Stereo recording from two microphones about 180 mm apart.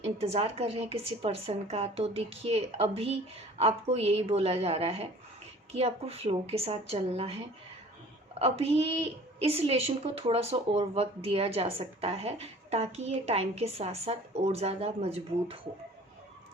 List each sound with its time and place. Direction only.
0.0 s a woman's voice: 35° right (ahead or behind)